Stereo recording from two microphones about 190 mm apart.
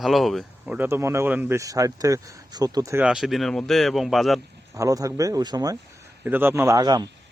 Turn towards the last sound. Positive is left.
turn(degrees=-20)  # may be behind; listen again after turning